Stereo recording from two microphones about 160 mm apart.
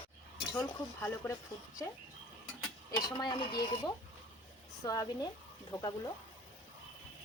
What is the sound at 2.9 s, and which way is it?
Speech, 25° left (ahead or behind).